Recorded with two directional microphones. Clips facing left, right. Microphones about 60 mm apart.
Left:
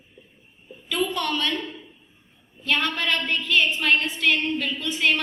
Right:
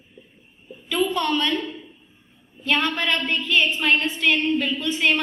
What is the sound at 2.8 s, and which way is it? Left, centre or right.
A woman's voice, centre.